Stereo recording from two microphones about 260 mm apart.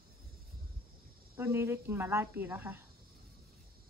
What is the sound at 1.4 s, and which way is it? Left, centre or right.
Speech, centre.